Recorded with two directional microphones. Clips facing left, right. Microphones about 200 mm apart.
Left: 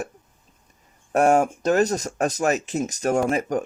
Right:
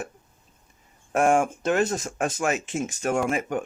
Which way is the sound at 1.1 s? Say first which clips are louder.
Left 3 dB; 40° left (ahead or behind).